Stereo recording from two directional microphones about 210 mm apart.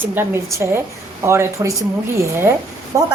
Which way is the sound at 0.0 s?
10° right (ahead or behind).